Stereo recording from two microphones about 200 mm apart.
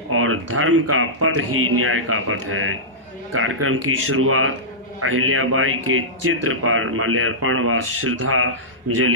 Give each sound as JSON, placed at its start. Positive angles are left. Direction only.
{"t": 0.1, "sound": "a man's voice", "side_deg": -90}